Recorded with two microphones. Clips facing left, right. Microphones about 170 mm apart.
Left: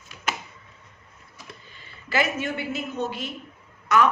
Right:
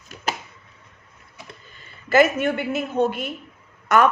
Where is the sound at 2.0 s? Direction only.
50° right (ahead or behind).